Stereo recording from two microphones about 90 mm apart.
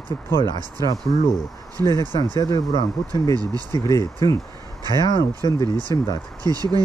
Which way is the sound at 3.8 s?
40° left (ahead or behind).